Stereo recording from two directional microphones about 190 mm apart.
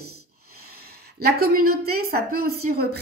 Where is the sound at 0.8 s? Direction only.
55° right (ahead or behind).